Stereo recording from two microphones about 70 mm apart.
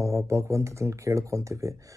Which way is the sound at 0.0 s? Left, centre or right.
Right.